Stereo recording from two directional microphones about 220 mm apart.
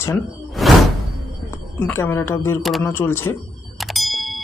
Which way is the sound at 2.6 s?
Centre (ahead or behind).